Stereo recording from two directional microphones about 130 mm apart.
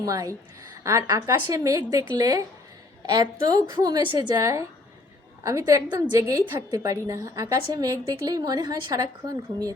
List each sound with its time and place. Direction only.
0.0 s a woman's voice: 25° right (ahead or behind)
4.4 s a woman's voice: 20° right (ahead or behind)